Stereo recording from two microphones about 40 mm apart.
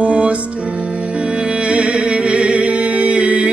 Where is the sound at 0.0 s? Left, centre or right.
Right.